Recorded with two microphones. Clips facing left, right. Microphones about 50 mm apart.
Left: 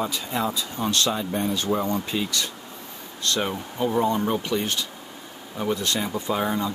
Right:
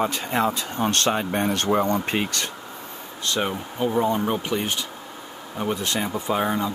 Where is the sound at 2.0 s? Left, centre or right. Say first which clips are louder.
Right 2 dB; right.